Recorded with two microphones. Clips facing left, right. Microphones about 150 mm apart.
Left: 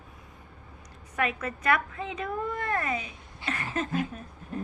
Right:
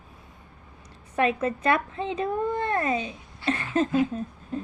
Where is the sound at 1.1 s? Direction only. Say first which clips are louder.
Right 6 dB; 30° right (ahead or behind).